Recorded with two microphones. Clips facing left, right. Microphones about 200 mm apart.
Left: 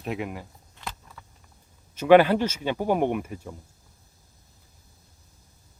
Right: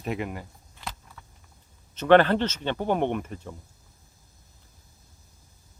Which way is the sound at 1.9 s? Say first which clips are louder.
Left 2 dB; 10° left (ahead or behind).